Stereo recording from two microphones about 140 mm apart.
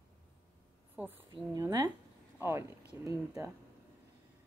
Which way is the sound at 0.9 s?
15° right (ahead or behind).